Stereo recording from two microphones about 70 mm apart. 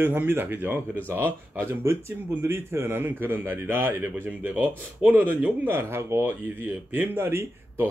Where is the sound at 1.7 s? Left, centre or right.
Right.